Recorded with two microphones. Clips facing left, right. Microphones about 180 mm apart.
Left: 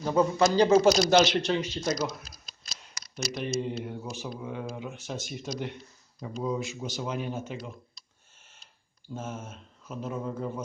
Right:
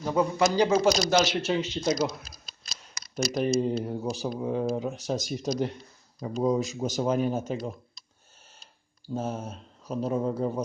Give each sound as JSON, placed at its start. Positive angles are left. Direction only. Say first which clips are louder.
{"t": 0.0, "sound": "a man's voice", "louder": "left 1 dB", "side_deg": -5}
{"t": 0.7, "sound": "speech", "louder": "left 2 dB", "side_deg": 0}
{"t": 3.2, "sound": "speech", "louder": "right 6 dB", "side_deg": -40}
{"t": 9.1, "sound": "speech", "louder": "right 6 dB", "side_deg": -35}